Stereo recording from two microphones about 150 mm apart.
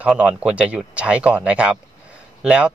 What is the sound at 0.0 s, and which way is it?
Speech, 5° right (ahead or behind).